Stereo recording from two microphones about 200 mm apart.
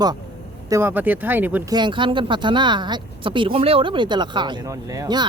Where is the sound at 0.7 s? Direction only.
10° right (ahead or behind).